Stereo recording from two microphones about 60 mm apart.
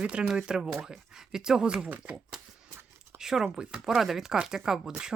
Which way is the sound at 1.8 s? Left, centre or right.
Right.